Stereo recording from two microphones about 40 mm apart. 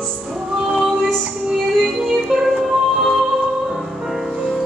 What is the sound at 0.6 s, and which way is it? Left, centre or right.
Female singing, centre.